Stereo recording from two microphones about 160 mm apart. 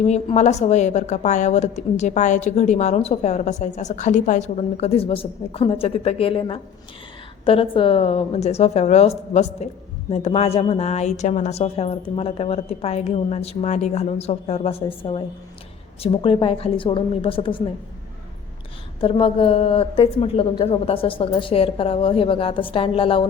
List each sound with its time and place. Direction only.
0.0 s a woman's voice: 45° left (ahead or behind)
18.9 s a woman's voice: 35° left (ahead or behind)